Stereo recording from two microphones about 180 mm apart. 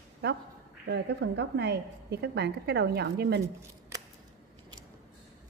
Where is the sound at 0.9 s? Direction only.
70° right (ahead or behind).